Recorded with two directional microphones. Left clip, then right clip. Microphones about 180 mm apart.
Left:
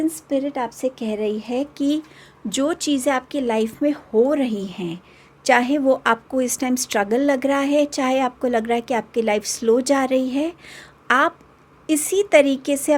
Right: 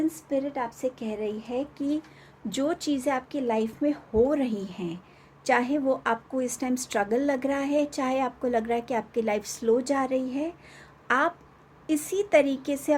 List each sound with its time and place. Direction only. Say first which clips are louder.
0.3 s speech: left 6 dB; 60° left (ahead or behind)
2.5 s a woman's voice: left 6 dB; 35° left (ahead or behind)